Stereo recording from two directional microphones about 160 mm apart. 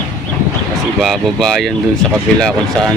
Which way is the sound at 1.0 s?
Centre (ahead or behind).